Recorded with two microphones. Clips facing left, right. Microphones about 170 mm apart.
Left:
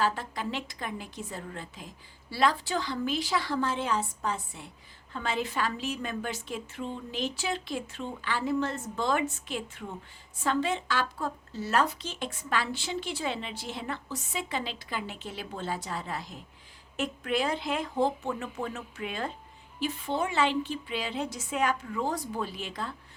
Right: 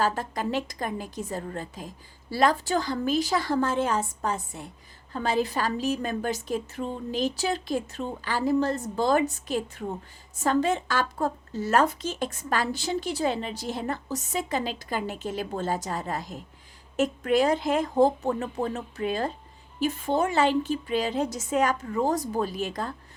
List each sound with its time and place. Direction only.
0.0 s a woman's voice: 45° right (ahead or behind)